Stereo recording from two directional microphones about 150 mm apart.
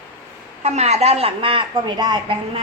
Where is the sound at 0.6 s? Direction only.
45° right (ahead or behind).